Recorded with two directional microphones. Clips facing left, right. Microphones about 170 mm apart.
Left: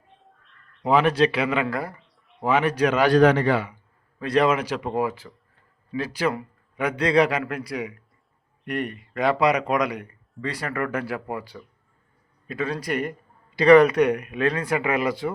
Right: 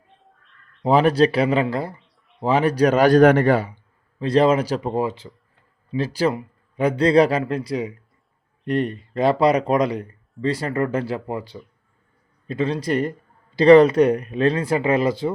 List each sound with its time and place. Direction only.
0.9 s a man's voice: 35° right (ahead or behind)
1.6 s a man's voice: 25° right (ahead or behind); by 3.7 s 45° right (ahead or behind)
4.2 s speech: 30° right (ahead or behind)